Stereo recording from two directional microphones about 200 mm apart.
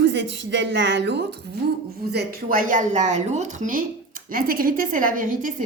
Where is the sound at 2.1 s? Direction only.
50° right (ahead or behind).